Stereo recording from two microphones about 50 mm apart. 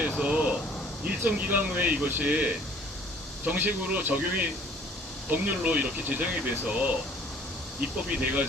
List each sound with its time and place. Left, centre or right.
0.2 s air conditioning: right
1.3 s speech: right